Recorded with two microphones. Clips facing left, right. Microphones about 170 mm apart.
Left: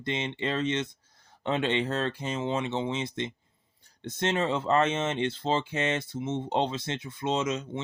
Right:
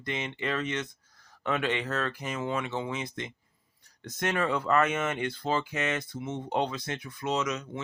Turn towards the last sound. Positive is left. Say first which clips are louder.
# left 2 dB
turn(degrees=25)  # may be behind; listen again after turning